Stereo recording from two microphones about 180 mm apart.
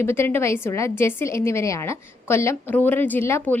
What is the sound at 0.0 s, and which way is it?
A woman's voice, 10° left (ahead or behind).